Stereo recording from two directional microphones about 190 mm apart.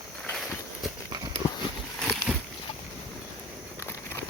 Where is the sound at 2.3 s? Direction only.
5° right (ahead or behind).